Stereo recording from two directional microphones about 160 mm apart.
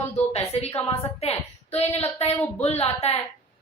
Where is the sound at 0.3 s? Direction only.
40° left (ahead or behind).